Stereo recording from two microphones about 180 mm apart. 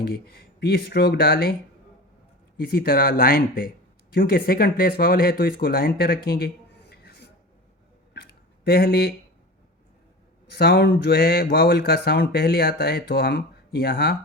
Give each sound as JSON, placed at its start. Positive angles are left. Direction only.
{"t": 0.0, "sound": "speech", "side_deg": 60}
{"t": 2.6, "sound": "speech", "side_deg": 55}
{"t": 6.9, "sound": "a sound", "side_deg": 65}
{"t": 10.5, "sound": "speech", "side_deg": 60}